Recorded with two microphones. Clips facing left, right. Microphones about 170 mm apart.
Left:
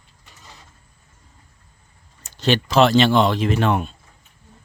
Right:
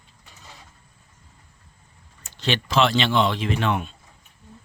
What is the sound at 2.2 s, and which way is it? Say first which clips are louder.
Speech: left 6 dB; 40° left (ahead or behind).